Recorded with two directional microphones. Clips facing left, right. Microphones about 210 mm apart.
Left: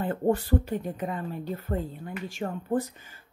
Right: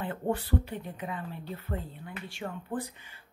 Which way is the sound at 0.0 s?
45° left (ahead or behind).